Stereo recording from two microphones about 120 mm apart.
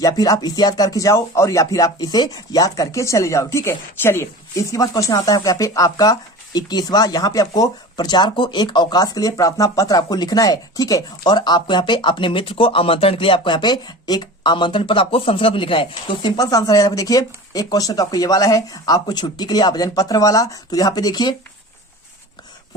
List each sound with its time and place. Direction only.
0.0 s speech: 30° left (ahead or behind)